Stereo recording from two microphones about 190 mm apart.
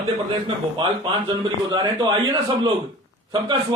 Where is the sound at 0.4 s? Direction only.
25° right (ahead or behind).